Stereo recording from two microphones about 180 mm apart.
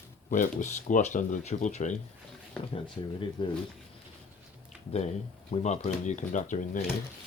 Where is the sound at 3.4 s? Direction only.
25° left (ahead or behind).